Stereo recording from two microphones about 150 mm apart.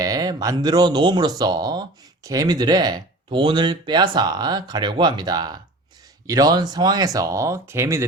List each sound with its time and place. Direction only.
0.0 s speech: 25° right (ahead or behind)